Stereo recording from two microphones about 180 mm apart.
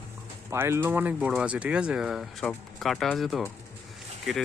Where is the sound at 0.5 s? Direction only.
15° right (ahead or behind).